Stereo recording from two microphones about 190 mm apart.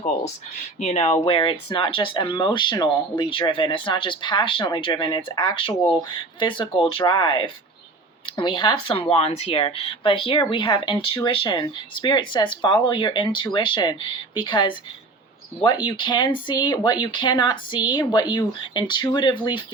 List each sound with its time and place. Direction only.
0.8 s speech: 35° left (ahead or behind)